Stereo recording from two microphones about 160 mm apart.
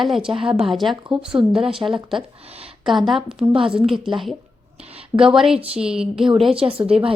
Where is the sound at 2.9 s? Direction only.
Centre (ahead or behind).